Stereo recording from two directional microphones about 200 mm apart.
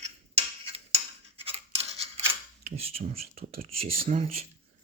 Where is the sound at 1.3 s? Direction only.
30° right (ahead or behind).